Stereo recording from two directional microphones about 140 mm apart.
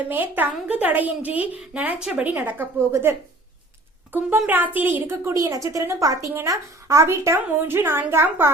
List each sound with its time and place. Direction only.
0.0 s a woman's voice: 15° right (ahead or behind)
4.4 s a woman's voice: 10° right (ahead or behind)